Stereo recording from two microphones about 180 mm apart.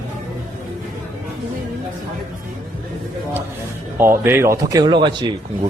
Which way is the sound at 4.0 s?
15° right (ahead or behind).